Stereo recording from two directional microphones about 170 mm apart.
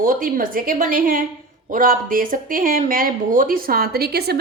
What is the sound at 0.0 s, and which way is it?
Speech, 55° right (ahead or behind).